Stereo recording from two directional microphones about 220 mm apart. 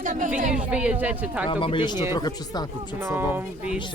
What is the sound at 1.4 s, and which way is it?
Speech, 20° left (ahead or behind).